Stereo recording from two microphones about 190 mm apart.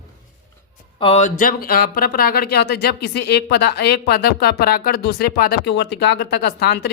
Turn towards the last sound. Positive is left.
turn(degrees=60)  # may be behind; listen again after turning